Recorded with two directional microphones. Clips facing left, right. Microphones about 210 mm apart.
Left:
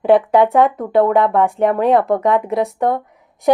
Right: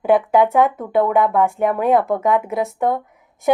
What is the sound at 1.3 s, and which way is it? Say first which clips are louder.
A woman's voice: left 2 dB; centre (ahead or behind).